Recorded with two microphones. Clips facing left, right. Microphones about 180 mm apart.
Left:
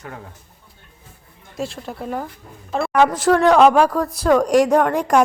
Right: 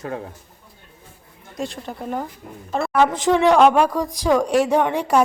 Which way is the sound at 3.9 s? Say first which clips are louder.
Left 2 dB; 10° right (ahead or behind).